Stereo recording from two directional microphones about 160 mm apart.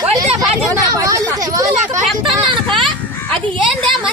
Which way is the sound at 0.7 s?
20° right (ahead or behind).